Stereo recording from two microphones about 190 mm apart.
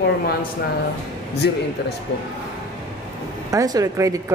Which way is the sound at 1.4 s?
60° left (ahead or behind).